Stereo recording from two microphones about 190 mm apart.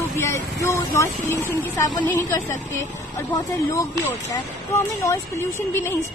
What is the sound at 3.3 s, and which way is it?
Speech, 15° left (ahead or behind).